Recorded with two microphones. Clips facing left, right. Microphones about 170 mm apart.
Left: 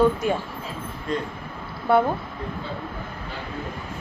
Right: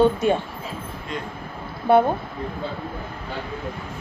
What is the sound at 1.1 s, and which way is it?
Speech, 40° left (ahead or behind).